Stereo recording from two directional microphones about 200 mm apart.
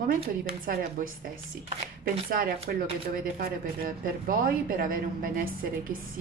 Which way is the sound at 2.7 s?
45° right (ahead or behind).